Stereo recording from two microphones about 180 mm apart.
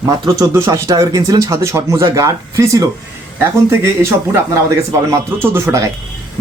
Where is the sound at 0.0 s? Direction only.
15° right (ahead or behind).